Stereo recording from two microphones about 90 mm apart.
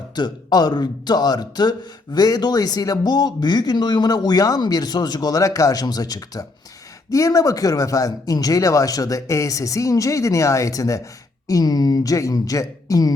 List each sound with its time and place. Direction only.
0.2 s speech: 50° left (ahead or behind)